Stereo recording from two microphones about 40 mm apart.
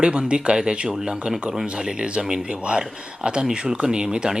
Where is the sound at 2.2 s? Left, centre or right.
Centre.